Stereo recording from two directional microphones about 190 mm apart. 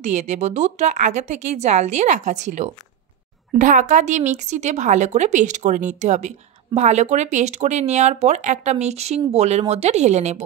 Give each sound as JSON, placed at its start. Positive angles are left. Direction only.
{"t": 0.0, "sound": "speech", "side_deg": -40}